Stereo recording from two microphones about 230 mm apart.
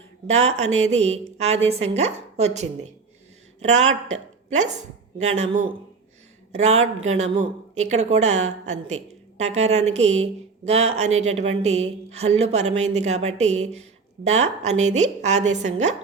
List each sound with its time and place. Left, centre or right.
0.3 s a woman's voice: right